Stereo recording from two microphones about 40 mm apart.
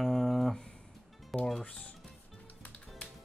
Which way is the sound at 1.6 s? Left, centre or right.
Left.